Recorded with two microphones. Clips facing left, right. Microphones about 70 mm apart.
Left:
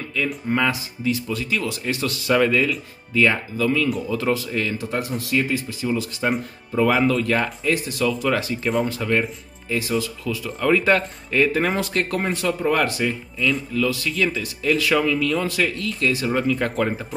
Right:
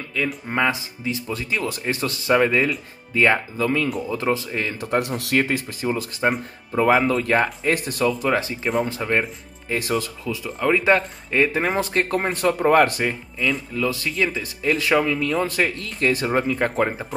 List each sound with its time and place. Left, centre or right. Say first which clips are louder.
0.5 s speech: left 1 dB; right
1.5 s speech: right 1 dB; right
4.7 s speech: right 3 dB; right
7.6 s speech: even; right
8.2 s speech: even; right
9.7 s speech: even; right
10.2 s speech: even; centre
12.3 s speech: right 3 dB; right
13.7 s speech: left 1 dB; right